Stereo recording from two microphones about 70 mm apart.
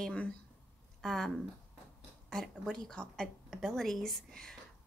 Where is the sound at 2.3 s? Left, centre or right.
Centre.